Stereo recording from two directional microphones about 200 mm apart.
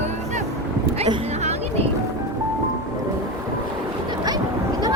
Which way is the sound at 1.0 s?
30° right (ahead or behind).